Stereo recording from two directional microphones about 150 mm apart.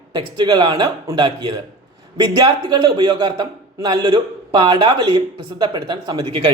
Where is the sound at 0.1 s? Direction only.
30° right (ahead or behind).